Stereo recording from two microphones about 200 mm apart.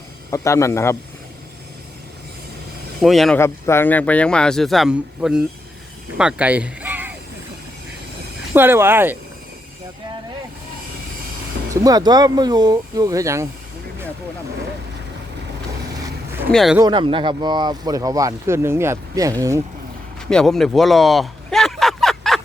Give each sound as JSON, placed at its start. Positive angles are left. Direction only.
{"t": 0.3, "sound": "a man's voice", "side_deg": 15}
{"t": 3.0, "sound": "speech", "side_deg": 0}
{"t": 3.3, "sound": "speech", "side_deg": 10}
{"t": 8.5, "sound": "speech", "side_deg": -10}
{"t": 11.7, "sound": "speech", "side_deg": -15}
{"t": 16.0, "sound": "vehicle", "side_deg": -15}
{"t": 16.5, "sound": "speech", "side_deg": 0}
{"t": 16.7, "sound": "speech", "side_deg": -20}
{"t": 20.3, "sound": "speech", "side_deg": 0}